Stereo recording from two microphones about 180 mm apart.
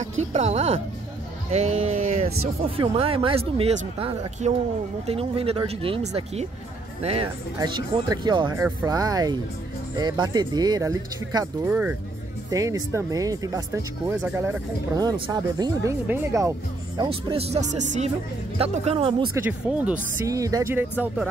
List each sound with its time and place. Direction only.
0.2 s speech: 40° right (ahead or behind)
2.1 s speech: 35° right (ahead or behind); by 12.0 s 10° right (ahead or behind)
12.4 s speech: 20° right (ahead or behind); by 18.1 s 40° right (ahead or behind)
18.6 s speech: 30° right (ahead or behind)
19.3 s speech: 10° right (ahead or behind)